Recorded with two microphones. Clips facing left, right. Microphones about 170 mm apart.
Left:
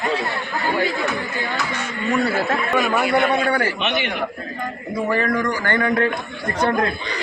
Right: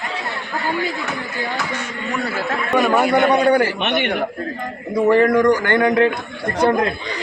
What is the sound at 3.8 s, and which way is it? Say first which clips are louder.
Speech: right 3 dB; 55° right (ahead or behind).